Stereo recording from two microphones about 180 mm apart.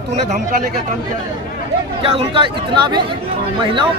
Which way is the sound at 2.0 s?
30° right (ahead or behind).